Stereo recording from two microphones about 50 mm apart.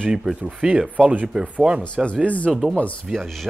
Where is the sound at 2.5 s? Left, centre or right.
Centre.